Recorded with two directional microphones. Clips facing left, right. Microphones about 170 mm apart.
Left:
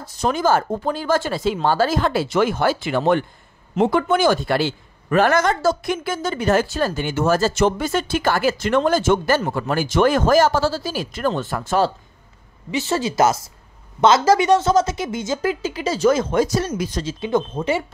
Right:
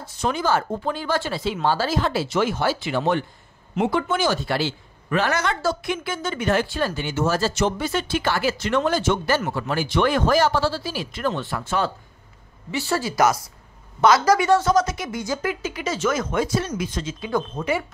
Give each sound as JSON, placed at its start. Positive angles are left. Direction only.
{"t": 0.0, "sound": "a man's voice", "side_deg": 40}
{"t": 12.7, "sound": "speech", "side_deg": 20}